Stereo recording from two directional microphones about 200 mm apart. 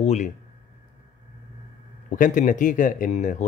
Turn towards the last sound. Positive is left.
turn(degrees=35)  # may be behind; listen again after turning